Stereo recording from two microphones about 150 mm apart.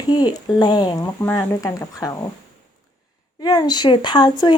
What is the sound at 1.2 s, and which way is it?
Speech, 15° left (ahead or behind).